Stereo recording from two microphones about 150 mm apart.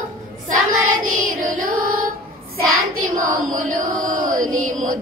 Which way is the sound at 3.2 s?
60° right (ahead or behind).